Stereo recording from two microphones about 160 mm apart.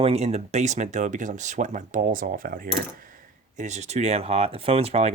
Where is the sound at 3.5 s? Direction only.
45° right (ahead or behind).